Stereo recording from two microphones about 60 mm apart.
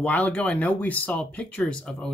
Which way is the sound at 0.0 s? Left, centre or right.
Left.